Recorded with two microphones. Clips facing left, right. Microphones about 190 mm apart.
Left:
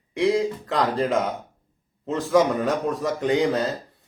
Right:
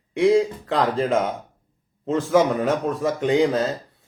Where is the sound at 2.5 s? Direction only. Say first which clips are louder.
Right 1 dB; centre (ahead or behind).